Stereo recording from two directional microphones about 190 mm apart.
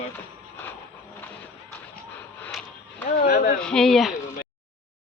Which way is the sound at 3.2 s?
55° left (ahead or behind).